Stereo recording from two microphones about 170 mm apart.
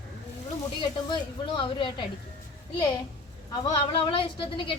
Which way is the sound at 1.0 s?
30° left (ahead or behind).